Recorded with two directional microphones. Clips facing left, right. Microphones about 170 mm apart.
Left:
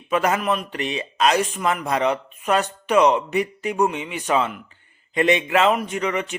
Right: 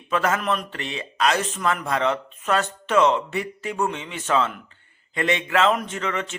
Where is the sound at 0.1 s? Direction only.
15° left (ahead or behind).